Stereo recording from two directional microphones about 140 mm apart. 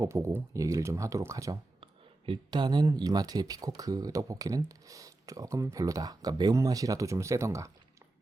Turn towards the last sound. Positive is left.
turn(degrees=-20)  # may be behind; listen again after turning